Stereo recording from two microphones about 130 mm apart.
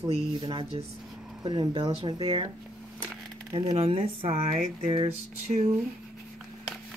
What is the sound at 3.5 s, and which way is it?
Speech, 50° right (ahead or behind).